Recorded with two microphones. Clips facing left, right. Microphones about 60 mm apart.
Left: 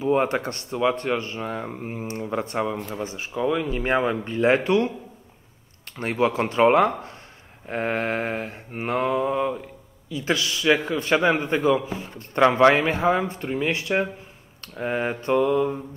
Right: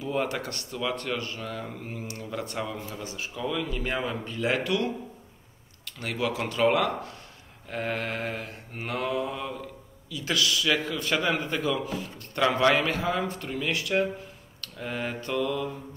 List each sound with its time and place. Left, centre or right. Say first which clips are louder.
0.0 s a man's voice: left 7 dB; left